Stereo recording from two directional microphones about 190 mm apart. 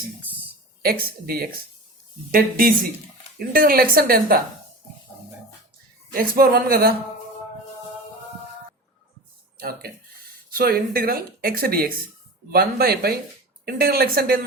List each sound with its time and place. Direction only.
0.8 s speech: 50° right (ahead or behind)
6.1 s speech: 50° right (ahead or behind)
9.6 s speech: 50° right (ahead or behind)